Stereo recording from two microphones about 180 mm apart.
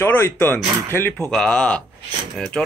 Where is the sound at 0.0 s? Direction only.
10° left (ahead or behind).